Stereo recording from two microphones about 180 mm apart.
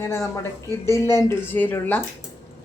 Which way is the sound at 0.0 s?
15° left (ahead or behind).